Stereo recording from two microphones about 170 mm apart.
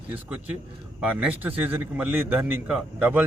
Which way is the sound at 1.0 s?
5° right (ahead or behind).